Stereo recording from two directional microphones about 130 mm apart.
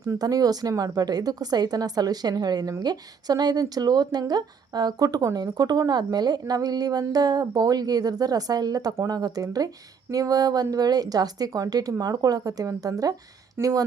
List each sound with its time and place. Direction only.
0.0 s a woman's voice: 30° right (ahead or behind)